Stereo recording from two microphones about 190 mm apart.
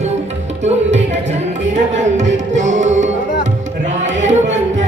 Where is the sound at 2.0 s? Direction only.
40° right (ahead or behind).